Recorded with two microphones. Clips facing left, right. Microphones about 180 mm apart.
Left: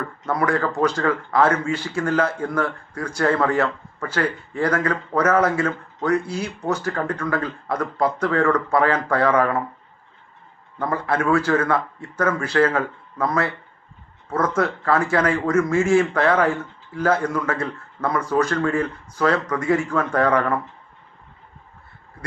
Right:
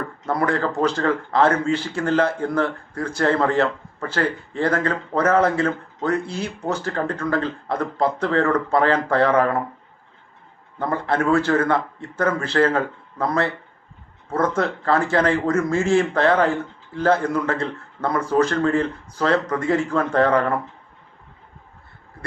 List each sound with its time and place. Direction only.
0.3 s speech: 30° right (ahead or behind)
10.8 s speech: 30° right (ahead or behind)